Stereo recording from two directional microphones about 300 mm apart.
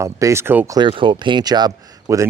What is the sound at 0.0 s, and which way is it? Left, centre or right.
Speech, centre.